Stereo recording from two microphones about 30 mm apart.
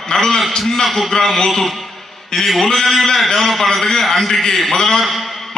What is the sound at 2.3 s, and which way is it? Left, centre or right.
Speech, left.